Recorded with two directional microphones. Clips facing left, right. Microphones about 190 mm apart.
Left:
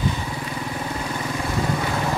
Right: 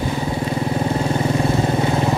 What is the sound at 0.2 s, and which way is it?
Vehicle, 30° right (ahead or behind).